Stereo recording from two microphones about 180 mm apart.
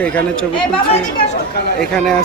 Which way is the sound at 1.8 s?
5° left (ahead or behind).